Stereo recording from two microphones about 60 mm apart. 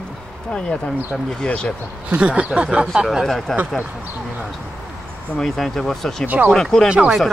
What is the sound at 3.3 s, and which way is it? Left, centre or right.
Speech, centre.